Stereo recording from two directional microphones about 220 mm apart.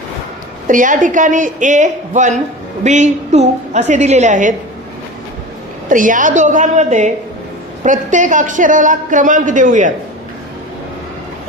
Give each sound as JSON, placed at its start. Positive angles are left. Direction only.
{"t": 0.7, "sound": "a man's voice", "side_deg": -35}
{"t": 5.9, "sound": "a man's voice", "side_deg": -35}